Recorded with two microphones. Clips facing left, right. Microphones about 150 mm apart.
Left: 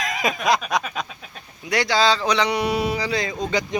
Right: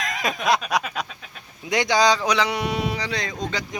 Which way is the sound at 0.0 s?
Centre (ahead or behind).